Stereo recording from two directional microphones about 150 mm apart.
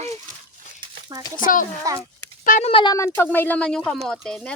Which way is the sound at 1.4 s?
65° left (ahead or behind).